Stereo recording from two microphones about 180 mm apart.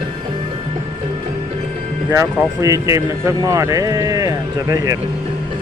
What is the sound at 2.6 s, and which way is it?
Speech, 15° right (ahead or behind).